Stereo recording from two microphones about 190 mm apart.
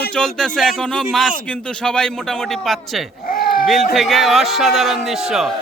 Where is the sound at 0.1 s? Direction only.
5° left (ahead or behind).